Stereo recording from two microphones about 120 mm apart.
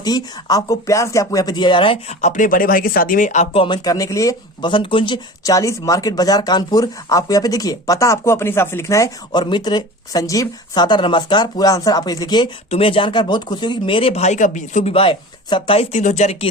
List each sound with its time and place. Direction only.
0.0 s speech: 35° left (ahead or behind)
2.2 s speech: 90° left
3.5 s speech: 50° left (ahead or behind)
3.8 s speech: 30° left (ahead or behind)
4.7 s speech: 45° left (ahead or behind)
5.4 s speech: 30° left (ahead or behind)
9.3 s speech: 40° left (ahead or behind)
12.7 s speech: 50° left (ahead or behind); by 14.9 s 90° left
14.9 s speech: 45° left (ahead or behind); by 16.5 s 60° left (ahead or behind)